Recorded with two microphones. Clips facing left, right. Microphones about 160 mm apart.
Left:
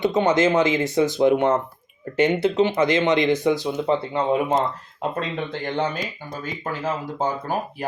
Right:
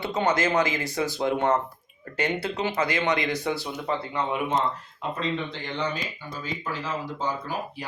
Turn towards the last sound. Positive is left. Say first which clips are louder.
# left 5 dB
turn(degrees=50)  # may be behind; listen again after turning